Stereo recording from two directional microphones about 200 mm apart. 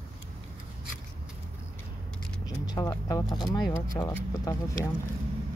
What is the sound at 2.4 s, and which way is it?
Speech, 20° left (ahead or behind).